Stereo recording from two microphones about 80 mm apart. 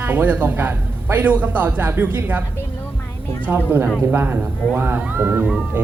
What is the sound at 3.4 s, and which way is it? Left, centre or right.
A man's voice, right.